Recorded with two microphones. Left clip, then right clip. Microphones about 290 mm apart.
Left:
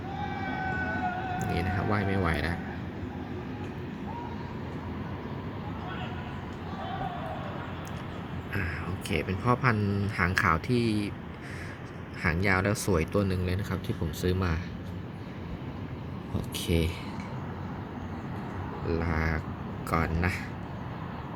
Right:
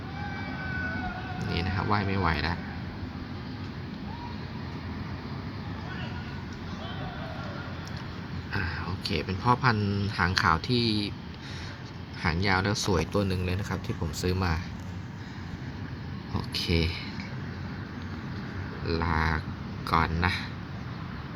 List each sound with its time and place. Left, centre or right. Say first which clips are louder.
1.4 s speech: left 1 dB; centre
9.2 s speech: right 3 dB; centre
10.7 s speech: right 1 dB; left
12.2 s speech: even; centre
16.6 s speech: right 2 dB; centre
18.9 s speech: right 3 dB; centre